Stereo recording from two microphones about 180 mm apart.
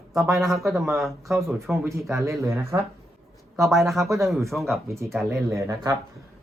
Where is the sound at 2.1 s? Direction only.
15° right (ahead or behind).